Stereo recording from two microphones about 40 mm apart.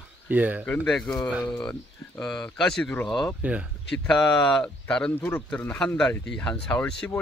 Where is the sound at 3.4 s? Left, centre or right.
Right.